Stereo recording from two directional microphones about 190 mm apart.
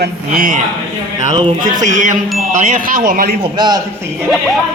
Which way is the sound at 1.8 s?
40° right (ahead or behind).